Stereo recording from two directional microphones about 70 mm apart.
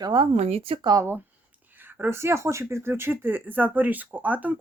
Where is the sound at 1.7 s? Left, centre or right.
Right.